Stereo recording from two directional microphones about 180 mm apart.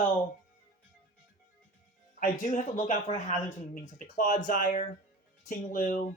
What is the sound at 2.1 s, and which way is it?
Speech, 50° left (ahead or behind).